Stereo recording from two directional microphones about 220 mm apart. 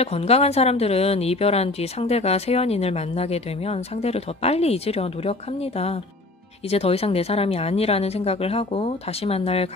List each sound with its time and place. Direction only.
0.0 s a woman's voice: 30° left (ahead or behind)
6.7 s a woman's voice: 25° left (ahead or behind)